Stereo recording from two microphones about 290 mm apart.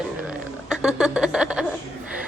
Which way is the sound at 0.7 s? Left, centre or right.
Centre.